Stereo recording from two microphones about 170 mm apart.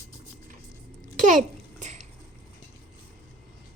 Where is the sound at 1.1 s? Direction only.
50° right (ahead or behind).